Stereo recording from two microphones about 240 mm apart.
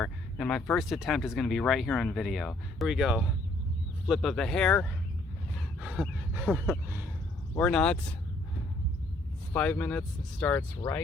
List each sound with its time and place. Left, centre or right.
0.0 s speech: centre
5.8 s dog: centre
7.5 s speech: centre
9.5 s speech: centre